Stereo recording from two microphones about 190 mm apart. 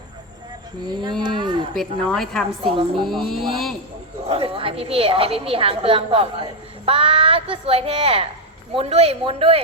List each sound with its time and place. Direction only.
0.9 s a woman's voice: 20° right (ahead or behind)
1.7 s a woman's voice: centre (ahead or behind)
4.3 s a woman's voice: 30° right (ahead or behind)